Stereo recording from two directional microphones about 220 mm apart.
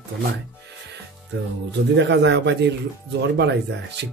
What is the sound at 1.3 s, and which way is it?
Speech, 55° right (ahead or behind).